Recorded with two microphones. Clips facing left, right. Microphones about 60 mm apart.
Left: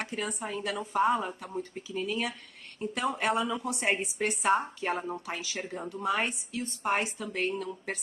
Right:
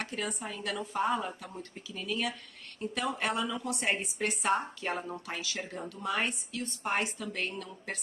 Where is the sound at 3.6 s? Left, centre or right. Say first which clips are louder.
Left 2 dB; left.